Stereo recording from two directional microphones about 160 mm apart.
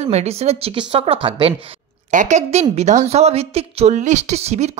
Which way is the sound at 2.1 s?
50° right (ahead or behind).